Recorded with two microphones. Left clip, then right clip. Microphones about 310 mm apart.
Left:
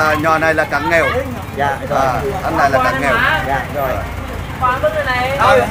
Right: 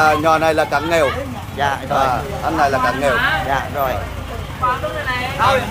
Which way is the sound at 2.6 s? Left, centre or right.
Centre.